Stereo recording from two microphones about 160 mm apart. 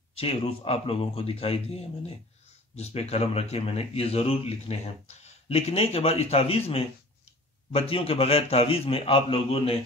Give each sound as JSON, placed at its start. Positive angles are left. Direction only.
{"t": 0.1, "sound": "speech", "side_deg": 35}